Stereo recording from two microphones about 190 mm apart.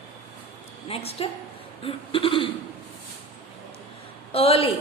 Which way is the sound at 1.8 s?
30° left (ahead or behind).